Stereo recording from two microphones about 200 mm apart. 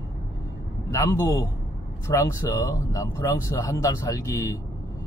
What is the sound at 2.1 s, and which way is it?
Speech, 15° left (ahead or behind).